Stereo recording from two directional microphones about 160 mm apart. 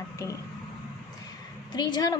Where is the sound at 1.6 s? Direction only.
25° left (ahead or behind).